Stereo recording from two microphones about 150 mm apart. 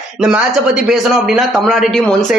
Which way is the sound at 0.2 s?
5° right (ahead or behind).